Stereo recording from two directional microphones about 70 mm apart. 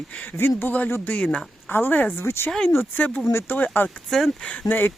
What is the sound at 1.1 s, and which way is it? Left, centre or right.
Speech, centre.